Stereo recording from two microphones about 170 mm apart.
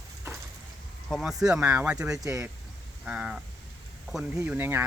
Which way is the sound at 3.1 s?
5° right (ahead or behind).